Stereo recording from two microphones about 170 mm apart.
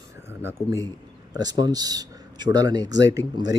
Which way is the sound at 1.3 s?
25° right (ahead or behind).